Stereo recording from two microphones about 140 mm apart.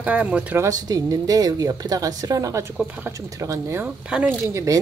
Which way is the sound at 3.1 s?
25° right (ahead or behind).